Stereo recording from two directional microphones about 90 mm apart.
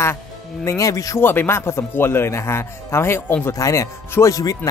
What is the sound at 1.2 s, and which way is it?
A man's voice, 25° left (ahead or behind).